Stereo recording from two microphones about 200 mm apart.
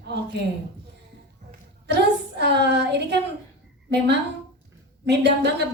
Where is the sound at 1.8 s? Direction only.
55° right (ahead or behind).